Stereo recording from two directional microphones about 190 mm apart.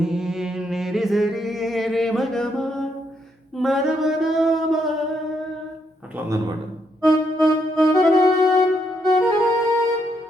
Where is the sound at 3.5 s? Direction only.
Centre (ahead or behind).